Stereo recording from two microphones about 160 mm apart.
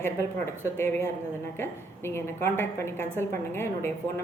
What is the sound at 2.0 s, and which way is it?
A woman's voice, 15° left (ahead or behind).